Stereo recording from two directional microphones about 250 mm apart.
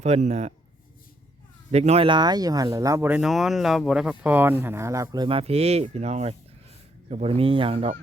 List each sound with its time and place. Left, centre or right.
0.0 s speech: right
1.7 s speech: right